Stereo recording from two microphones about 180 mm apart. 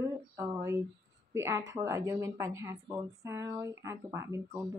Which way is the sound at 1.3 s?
15° right (ahead or behind).